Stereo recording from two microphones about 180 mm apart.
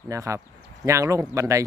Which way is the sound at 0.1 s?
15° right (ahead or behind).